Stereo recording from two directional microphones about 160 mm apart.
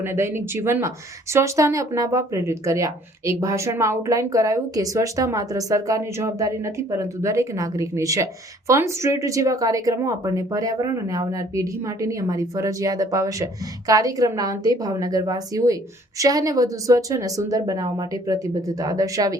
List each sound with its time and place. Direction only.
0.0 s speech: 15° right (ahead or behind)